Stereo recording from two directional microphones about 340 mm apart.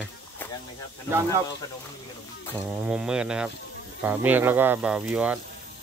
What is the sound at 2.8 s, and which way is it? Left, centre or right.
Speech, centre.